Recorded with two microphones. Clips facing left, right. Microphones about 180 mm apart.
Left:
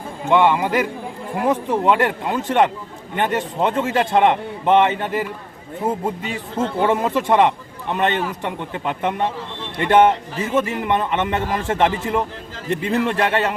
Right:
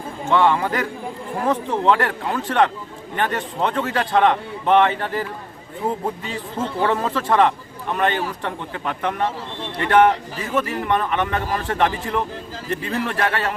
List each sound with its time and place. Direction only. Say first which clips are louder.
0.3 s a man's voice: left 2 dB; 15° left (ahead or behind)